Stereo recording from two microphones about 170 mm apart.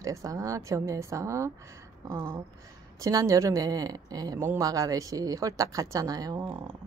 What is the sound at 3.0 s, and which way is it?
A woman's voice, 20° right (ahead or behind).